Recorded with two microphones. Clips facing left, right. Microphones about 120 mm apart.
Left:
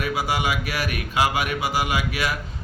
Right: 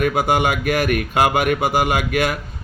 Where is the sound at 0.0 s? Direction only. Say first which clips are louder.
Right 7 dB; 55° right (ahead or behind).